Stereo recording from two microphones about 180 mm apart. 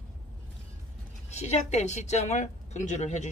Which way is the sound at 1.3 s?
40° left (ahead or behind).